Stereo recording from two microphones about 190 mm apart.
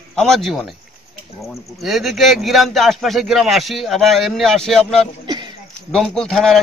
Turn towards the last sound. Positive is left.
turn(degrees=0)  # may be behind; listen again after turning